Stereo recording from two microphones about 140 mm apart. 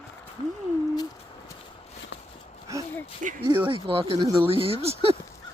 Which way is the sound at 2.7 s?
20° right (ahead or behind).